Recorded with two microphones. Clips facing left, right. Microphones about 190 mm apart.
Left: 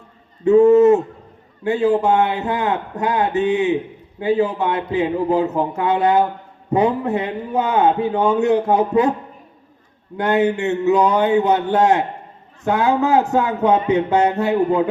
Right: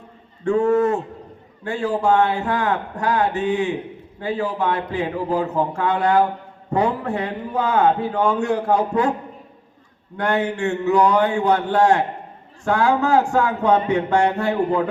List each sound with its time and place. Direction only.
0.4 s a sound: 20° left (ahead or behind)
1.6 s a man's voice: 20° left (ahead or behind)
10.2 s a man's voice: 20° left (ahead or behind)